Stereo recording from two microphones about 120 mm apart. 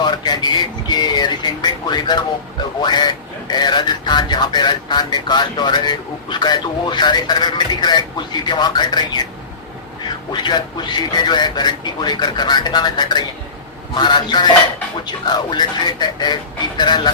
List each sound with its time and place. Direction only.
0.0 s speech: 35° left (ahead or behind)
10.3 s speech: 40° left (ahead or behind)